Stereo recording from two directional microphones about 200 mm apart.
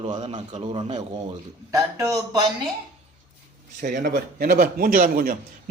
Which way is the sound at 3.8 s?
40° right (ahead or behind).